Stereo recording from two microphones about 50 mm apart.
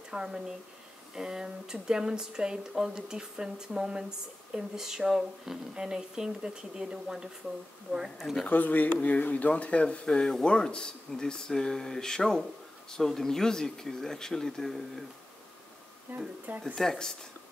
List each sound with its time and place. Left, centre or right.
0.1 s speech: centre
8.5 s speech: left; by 15.0 s centre
16.1 s speech: right
16.4 s speech: right
16.7 s speech: centre